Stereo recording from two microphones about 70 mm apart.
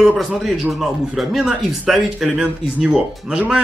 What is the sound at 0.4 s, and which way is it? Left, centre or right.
Speech, centre.